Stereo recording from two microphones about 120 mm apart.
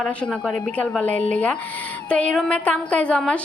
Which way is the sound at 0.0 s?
5° left (ahead or behind).